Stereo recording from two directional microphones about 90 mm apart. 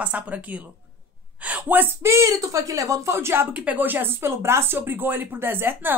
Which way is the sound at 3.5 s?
15° right (ahead or behind).